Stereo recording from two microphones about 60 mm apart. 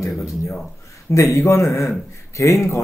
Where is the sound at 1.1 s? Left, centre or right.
Left.